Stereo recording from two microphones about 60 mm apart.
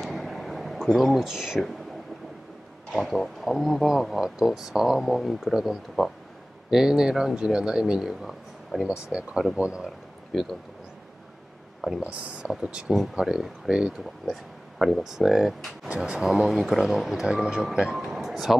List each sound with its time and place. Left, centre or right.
0.0 s a sound: centre
0.8 s speech: centre
3.0 s speech: centre
9.1 s speech: centre
10.3 s speech: centre
12.0 s speech: centre
14.2 s speech: centre
17.9 s a sound: centre